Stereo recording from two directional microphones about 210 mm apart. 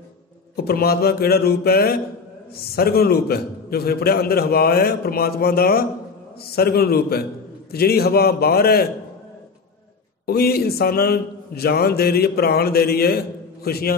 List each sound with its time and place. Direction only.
0.6 s a man's voice: 50° left (ahead or behind)
10.2 s a man's voice: 45° left (ahead or behind)